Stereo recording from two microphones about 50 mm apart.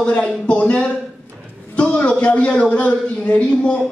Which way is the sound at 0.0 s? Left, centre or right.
Left.